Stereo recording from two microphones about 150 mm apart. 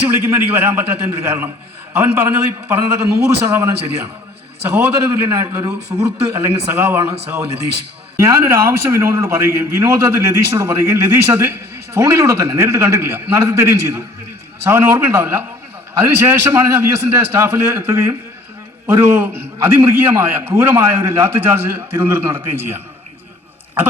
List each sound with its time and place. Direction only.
0.2 s a man's voice: 15° right (ahead or behind)
8.1 s a man's voice: 20° right (ahead or behind)